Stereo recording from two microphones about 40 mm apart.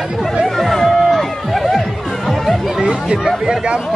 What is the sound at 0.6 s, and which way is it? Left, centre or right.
Music, centre.